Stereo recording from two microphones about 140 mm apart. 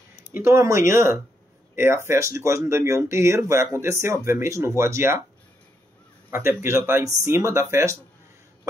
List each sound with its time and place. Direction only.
0.4 s speech: 20° right (ahead or behind)
6.3 s speech: 20° right (ahead or behind)